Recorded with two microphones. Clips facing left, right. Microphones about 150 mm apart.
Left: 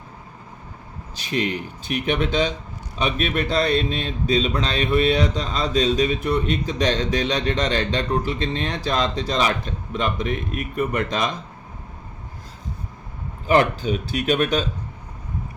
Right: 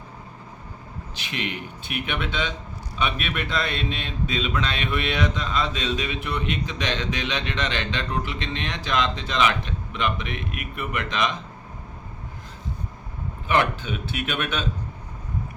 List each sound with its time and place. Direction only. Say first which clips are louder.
1.1 s speech: left 7 dB; 40° left (ahead or behind)
13.5 s speech: left 5 dB; 35° left (ahead or behind)